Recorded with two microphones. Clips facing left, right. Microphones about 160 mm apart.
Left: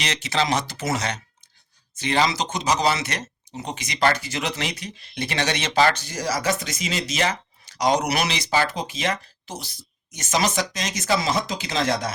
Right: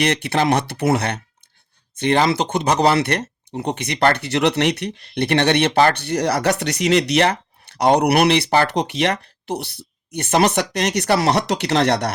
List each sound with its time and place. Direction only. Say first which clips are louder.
0.0 s speech: right 7 dB; 60° right (ahead or behind)